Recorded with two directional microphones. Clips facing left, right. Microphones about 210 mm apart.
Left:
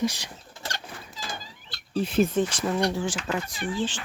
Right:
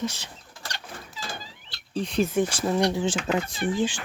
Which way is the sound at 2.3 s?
10° right (ahead or behind).